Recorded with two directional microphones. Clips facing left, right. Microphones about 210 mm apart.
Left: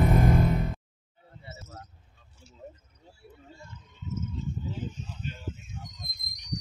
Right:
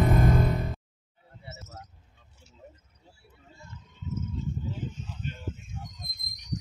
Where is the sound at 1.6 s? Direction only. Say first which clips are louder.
Even; centre (ahead or behind).